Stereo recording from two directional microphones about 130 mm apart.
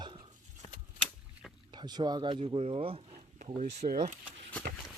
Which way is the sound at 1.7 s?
35° right (ahead or behind).